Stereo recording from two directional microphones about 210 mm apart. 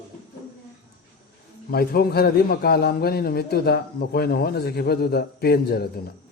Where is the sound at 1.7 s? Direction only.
45° left (ahead or behind).